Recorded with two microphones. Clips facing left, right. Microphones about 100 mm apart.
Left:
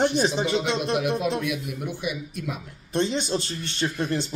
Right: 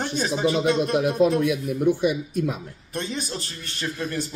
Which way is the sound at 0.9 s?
40° right (ahead or behind).